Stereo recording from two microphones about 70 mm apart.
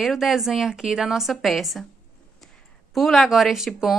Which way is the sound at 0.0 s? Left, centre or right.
Centre.